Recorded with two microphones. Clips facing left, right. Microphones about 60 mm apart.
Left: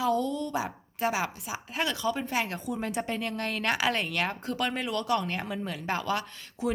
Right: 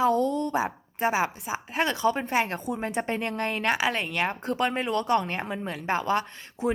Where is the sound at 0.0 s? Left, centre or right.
Right.